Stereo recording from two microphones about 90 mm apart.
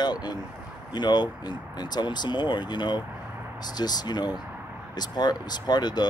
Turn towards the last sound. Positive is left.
turn(degrees=50)  # may be behind; listen again after turning